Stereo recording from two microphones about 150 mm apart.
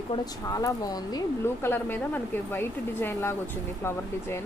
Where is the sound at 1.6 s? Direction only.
15° left (ahead or behind).